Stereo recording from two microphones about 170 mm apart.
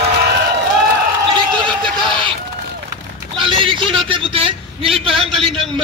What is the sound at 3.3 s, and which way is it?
A man's voice, 30° right (ahead or behind).